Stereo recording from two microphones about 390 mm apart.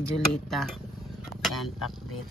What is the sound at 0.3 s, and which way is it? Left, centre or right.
A woman's voice, centre.